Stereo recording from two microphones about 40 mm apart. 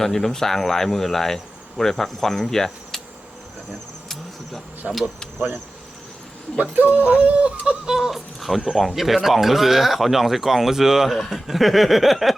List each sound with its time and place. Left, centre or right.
0.0 s speech: centre
3.7 s insect: centre
4.8 s speech: right
6.6 s speech: right
7.2 s a sound: right
7.9 s speech: centre
8.4 s speech: centre